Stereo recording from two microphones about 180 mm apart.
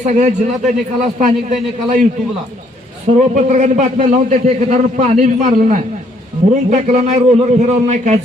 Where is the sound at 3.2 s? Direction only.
40° right (ahead or behind).